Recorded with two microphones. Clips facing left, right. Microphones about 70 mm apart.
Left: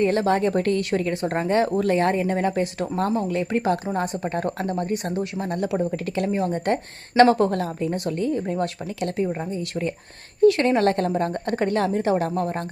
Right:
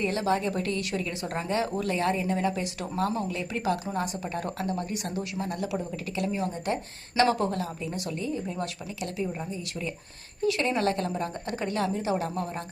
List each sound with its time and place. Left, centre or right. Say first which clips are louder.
0.0 s a woman's voice: left 7 dB; left